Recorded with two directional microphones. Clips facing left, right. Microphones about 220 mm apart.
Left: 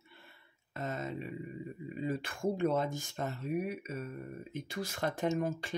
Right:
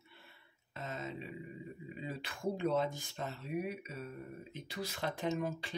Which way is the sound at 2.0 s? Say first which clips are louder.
Left 5 dB; 50° left (ahead or behind).